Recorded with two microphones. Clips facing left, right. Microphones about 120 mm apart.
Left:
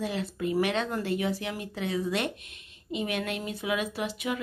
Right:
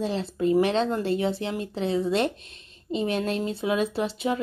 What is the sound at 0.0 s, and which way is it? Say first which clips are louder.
A woman's voice: right 5 dB; 30° right (ahead or behind).